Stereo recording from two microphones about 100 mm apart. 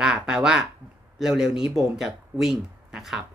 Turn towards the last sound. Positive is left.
turn(degrees=-5)  # may be behind; listen again after turning